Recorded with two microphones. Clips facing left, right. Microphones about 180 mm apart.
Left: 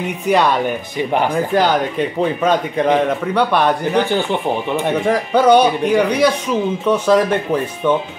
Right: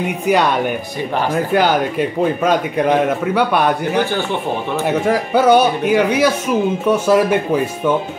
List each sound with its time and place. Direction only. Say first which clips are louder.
0.3 s speech: even; 5° right (ahead or behind)
1.5 s speech: right 1 dB; 5° right (ahead or behind)
4.1 s speech: left 2 dB; 15° left (ahead or behind)
4.7 s speech: right 2 dB; 5° right (ahead or behind)